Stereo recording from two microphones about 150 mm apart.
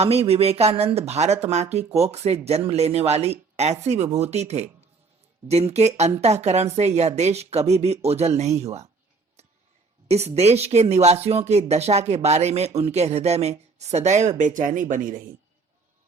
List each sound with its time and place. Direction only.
0.0 s speech: 45° right (ahead or behind)
10.1 s speech: 45° right (ahead or behind)